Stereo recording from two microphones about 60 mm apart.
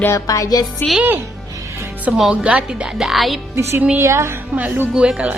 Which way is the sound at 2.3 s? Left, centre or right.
Right.